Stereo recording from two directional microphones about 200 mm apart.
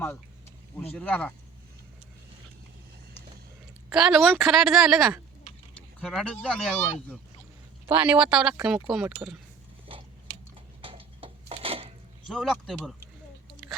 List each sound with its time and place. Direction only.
0.9 s a woman's voice: 5° left (ahead or behind)
3.8 s a woman's voice: centre (ahead or behind)
7.9 s a woman's voice: 5° right (ahead or behind)
9.9 s chewing: 25° right (ahead or behind)
10.8 s a sound: 30° right (ahead or behind)
12.3 s a woman's voice: centre (ahead or behind)